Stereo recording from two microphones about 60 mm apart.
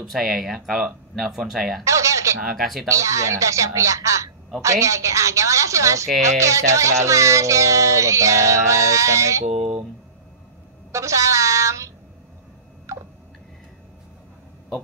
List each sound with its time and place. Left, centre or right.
0.1 s speech: centre
1.9 s a sound: right
2.5 s speech: centre
2.9 s speech: right
10.9 s a sound: right
12.9 s tick-tock: right